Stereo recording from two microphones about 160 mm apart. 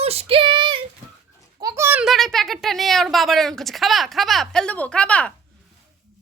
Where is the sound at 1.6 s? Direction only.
20° right (ahead or behind).